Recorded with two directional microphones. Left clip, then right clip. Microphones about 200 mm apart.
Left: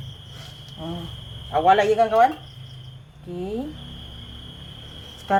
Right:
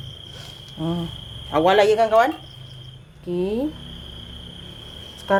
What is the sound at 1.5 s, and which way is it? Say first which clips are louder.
Speech: right 1 dB; 55° right (ahead or behind).